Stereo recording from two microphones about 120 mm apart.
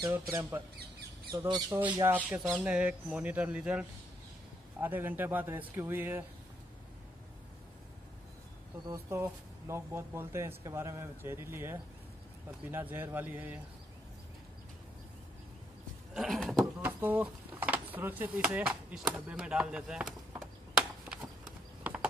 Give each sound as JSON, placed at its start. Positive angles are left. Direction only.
{"t": 0.1, "sound": "speech", "side_deg": -20}
{"t": 1.7, "sound": "speech", "side_deg": -20}
{"t": 8.8, "sound": "speech", "side_deg": -25}
{"t": 16.1, "sound": "a sound", "side_deg": 0}
{"t": 16.8, "sound": "speech", "side_deg": -15}